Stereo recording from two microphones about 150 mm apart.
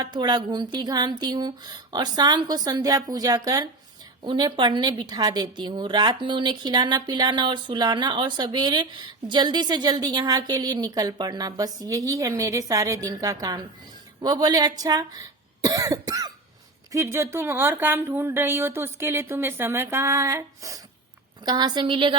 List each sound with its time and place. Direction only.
0.0 s a woman's voice: 30° right (ahead or behind)